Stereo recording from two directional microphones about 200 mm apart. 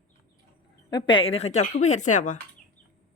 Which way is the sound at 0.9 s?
25° left (ahead or behind).